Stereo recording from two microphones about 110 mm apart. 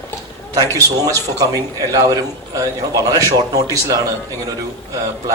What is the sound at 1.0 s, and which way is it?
Speech, 35° right (ahead or behind).